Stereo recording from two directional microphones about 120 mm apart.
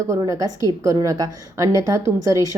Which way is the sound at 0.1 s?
30° right (ahead or behind).